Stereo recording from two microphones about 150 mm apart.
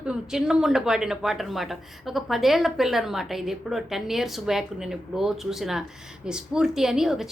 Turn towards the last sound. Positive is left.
turn(degrees=0)  # may be behind; listen again after turning